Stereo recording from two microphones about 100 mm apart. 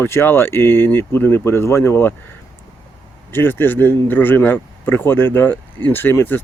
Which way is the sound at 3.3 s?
20° left (ahead or behind).